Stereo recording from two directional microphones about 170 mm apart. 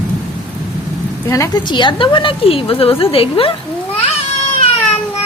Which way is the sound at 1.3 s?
25° left (ahead or behind).